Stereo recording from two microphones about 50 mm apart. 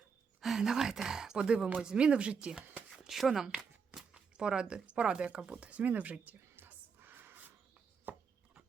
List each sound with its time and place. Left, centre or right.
0.4 s speech: centre
3.1 s speech: centre
4.1 s speech: centre
6.6 s a sound: right
8.1 s chopping: right